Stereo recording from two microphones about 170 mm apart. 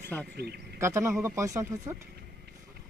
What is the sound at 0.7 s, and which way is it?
Speech, 15° right (ahead or behind).